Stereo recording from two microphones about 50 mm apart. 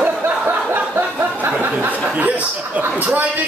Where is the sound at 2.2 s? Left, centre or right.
Right.